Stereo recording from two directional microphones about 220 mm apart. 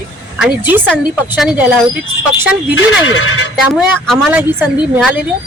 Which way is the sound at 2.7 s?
65° left (ahead or behind).